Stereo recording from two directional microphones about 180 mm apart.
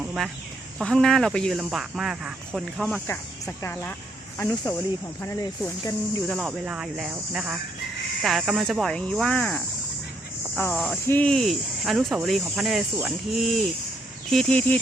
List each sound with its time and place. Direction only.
0.0 s bird: 5° right (ahead or behind)
0.8 s speech: 5° left (ahead or behind)
3.1 s speech: 15° left (ahead or behind)
6.2 s speech: centre (ahead or behind)